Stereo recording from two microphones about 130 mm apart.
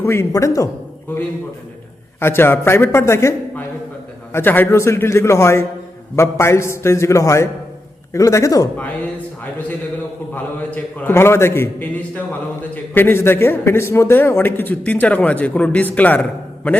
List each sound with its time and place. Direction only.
0.0 s a man's voice: 20° left (ahead or behind)
2.1 s a man's voice: 20° left (ahead or behind)
10.3 s a man's voice: 15° left (ahead or behind)